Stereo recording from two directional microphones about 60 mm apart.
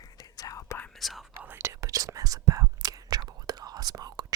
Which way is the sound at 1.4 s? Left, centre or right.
Right.